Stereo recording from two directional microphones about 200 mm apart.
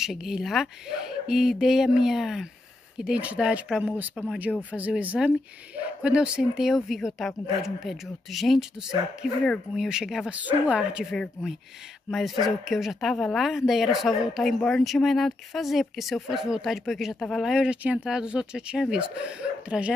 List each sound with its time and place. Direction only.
0.0 s a woman's voice: centre (ahead or behind)
4.5 s speech: 5° left (ahead or behind)
4.7 s a woman's voice: 10° right (ahead or behind)